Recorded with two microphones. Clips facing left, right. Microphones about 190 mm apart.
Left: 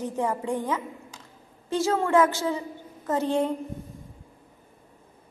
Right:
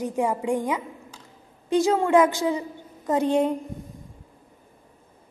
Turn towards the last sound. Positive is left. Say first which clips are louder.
# right 3 dB
turn(degrees=-15)  # may be behind; listen again after turning